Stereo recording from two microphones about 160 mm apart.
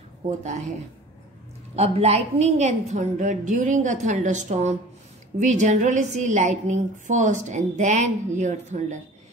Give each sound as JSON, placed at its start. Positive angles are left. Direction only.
{"t": 0.4, "sound": "a woman's voice", "side_deg": -45}
{"t": 1.8, "sound": "a woman's voice", "side_deg": -40}